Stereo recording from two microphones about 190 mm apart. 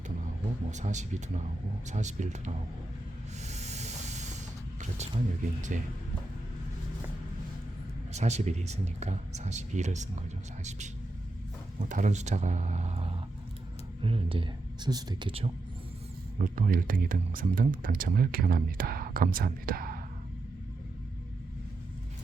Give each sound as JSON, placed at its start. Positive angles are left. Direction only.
{"t": 0.7, "sound": "speech", "side_deg": -40}
{"t": 3.4, "sound": "hiss", "side_deg": -35}
{"t": 4.8, "sound": "speech", "side_deg": -35}
{"t": 8.1, "sound": "speech", "side_deg": -35}
{"t": 16.4, "sound": "speech", "side_deg": -45}